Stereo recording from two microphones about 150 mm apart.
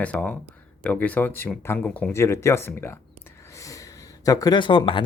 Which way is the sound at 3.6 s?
20° left (ahead or behind).